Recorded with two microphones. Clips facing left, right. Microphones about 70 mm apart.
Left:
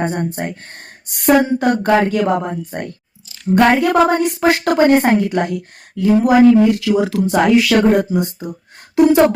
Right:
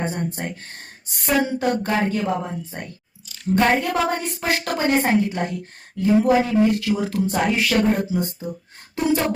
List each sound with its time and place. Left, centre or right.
0.0 s a woman's voice: left
3.9 s a woman's voice: left